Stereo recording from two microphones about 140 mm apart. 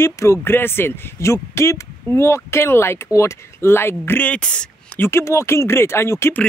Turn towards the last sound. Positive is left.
turn(degrees=20)  # may be behind; listen again after turning